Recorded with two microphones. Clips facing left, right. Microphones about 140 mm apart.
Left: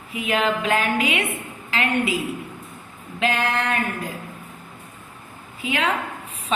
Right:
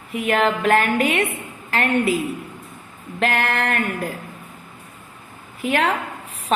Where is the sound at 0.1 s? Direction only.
55° right (ahead or behind).